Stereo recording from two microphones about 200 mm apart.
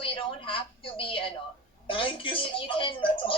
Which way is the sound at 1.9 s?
25° left (ahead or behind).